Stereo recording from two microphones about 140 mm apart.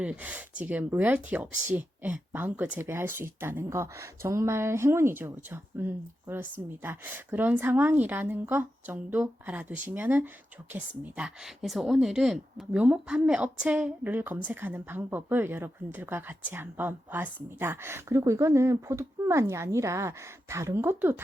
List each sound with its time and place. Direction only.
0.0 s a woman's voice: 10° right (ahead or behind)